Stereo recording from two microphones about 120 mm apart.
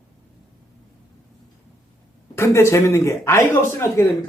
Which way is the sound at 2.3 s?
25° left (ahead or behind).